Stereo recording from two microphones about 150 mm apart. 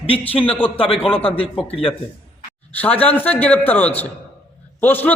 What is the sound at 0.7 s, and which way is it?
Speech, 40° left (ahead or behind).